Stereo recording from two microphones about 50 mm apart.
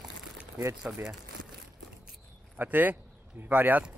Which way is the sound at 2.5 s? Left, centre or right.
Right.